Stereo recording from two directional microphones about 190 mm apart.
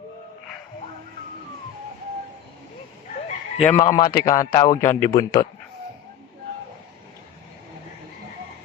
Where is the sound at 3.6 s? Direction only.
15° left (ahead or behind).